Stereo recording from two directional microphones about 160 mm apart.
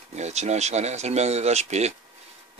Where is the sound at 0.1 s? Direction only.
45° right (ahead or behind).